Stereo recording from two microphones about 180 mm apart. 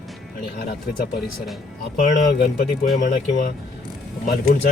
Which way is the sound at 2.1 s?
60° left (ahead or behind).